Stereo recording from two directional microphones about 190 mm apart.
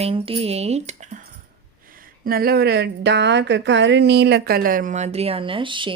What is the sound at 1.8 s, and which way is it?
Speech, 50° right (ahead or behind).